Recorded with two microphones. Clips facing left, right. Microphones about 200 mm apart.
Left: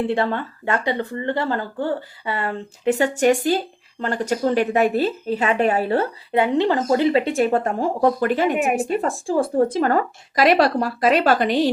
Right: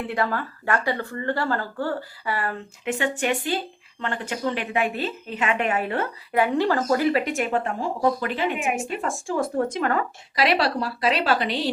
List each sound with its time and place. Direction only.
0.0 s a woman's voice: 30° left (ahead or behind); by 11.7 s 45° left (ahead or behind)